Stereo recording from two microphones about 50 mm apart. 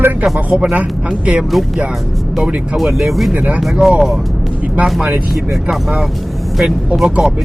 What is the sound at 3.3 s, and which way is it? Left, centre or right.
Speech, right.